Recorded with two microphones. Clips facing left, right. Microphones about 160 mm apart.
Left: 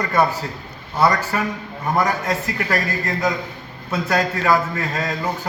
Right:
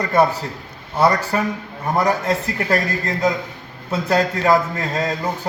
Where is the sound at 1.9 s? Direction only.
30° right (ahead or behind).